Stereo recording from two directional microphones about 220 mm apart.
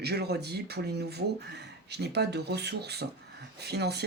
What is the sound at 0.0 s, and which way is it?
Speech, 45° right (ahead or behind).